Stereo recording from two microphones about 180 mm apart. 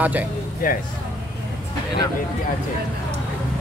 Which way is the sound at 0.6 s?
50° left (ahead or behind).